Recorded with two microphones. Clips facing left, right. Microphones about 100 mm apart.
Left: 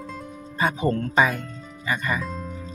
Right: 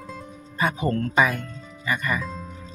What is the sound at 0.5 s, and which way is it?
Speech, 30° left (ahead or behind).